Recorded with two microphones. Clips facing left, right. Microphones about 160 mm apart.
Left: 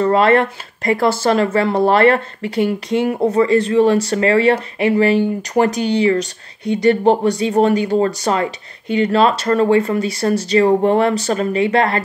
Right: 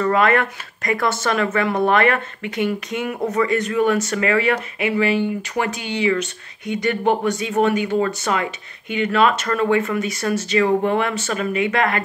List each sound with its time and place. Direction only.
0.0 s speech: 30° left (ahead or behind)